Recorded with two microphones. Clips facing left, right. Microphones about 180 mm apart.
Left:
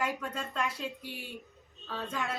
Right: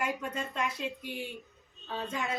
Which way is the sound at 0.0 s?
20° right (ahead or behind).